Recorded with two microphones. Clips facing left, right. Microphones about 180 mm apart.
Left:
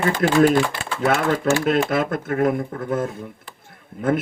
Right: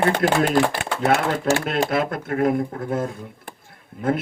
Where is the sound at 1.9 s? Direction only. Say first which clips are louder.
Left 1 dB; 50° left (ahead or behind).